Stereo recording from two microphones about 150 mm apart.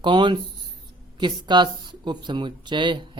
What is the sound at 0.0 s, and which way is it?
Speech, 30° right (ahead or behind).